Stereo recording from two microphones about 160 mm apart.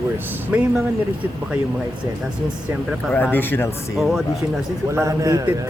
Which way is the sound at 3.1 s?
10° left (ahead or behind).